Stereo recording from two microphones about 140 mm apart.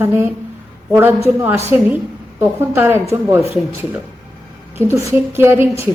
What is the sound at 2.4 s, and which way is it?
Speech, 15° right (ahead or behind).